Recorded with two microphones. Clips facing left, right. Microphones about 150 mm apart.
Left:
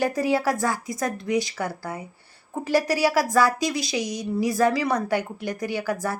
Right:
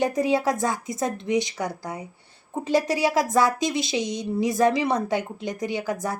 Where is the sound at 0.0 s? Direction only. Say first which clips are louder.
Right 1 dB; 20° right (ahead or behind).